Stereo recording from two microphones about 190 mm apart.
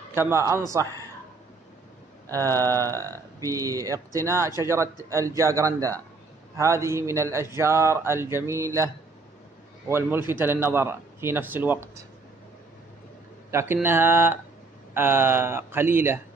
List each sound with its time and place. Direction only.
0.1 s speech: 15° right (ahead or behind)
2.3 s speech: 20° right (ahead or behind)
13.5 s speech: 15° right (ahead or behind)